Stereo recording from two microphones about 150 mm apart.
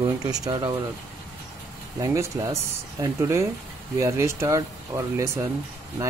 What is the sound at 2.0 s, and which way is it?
Speech, 20° right (ahead or behind).